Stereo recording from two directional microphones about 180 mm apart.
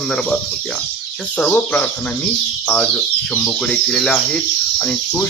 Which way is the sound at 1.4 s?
10° left (ahead or behind).